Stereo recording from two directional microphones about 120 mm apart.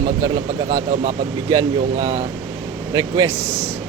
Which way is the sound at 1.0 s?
35° right (ahead or behind).